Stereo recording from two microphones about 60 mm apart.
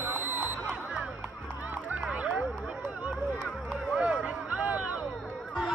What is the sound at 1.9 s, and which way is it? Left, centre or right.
Music, right.